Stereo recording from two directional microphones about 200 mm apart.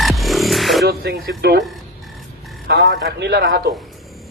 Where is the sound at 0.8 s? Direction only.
55° right (ahead or behind).